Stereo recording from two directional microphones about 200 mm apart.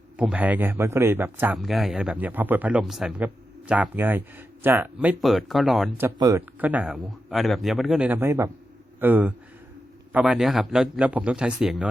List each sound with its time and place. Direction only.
0.2 s speech: 5° right (ahead or behind)
1.5 s speech: centre (ahead or behind)
6.1 s speech: 20° right (ahead or behind)
6.6 s a man's voice: 10° right (ahead or behind)